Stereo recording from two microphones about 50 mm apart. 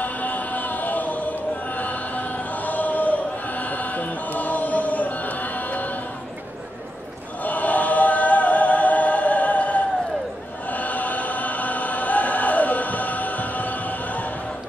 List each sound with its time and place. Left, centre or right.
0.0 s choir: left
7.4 s choir: left